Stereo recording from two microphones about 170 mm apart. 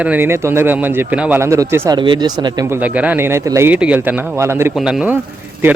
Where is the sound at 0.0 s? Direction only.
10° right (ahead or behind).